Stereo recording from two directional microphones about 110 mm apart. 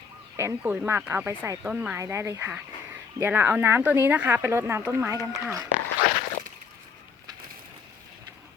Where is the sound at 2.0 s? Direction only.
25° right (ahead or behind).